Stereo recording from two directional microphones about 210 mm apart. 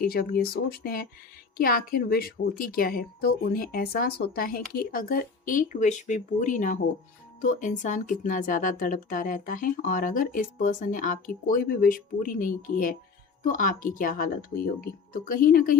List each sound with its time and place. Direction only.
0.0 s a woman's voice: 45° left (ahead or behind)